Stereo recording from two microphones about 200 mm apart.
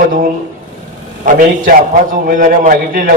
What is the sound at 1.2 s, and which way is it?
A man's voice, 45° right (ahead or behind).